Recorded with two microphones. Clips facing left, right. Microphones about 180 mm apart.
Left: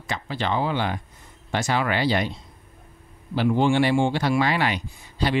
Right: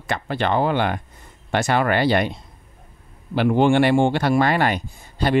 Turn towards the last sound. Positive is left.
turn(degrees=-50)  # may be behind; listen again after turning